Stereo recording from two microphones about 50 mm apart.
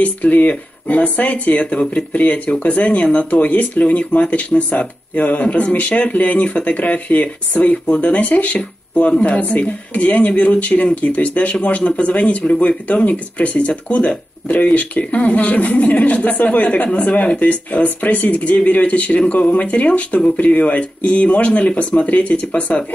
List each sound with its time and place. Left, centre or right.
0.0 s speech: left